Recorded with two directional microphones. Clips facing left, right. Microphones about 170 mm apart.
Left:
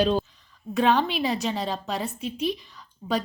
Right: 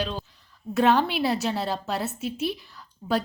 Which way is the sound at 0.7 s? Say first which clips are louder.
Right 1 dB; 10° right (ahead or behind).